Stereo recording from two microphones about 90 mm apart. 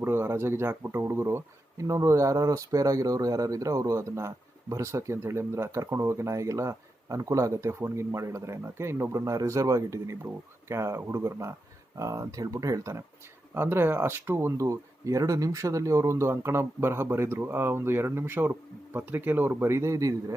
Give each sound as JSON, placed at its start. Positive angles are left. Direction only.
{"t": 0.0, "sound": "speech", "side_deg": -25}
{"t": 13.5, "sound": "speech", "side_deg": -25}